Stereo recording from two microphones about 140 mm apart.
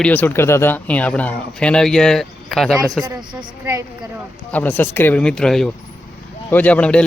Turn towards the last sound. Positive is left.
turn(degrees=10)  # may be behind; listen again after turning